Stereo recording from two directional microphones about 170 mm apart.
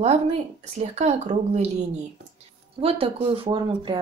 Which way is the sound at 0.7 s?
40° right (ahead or behind).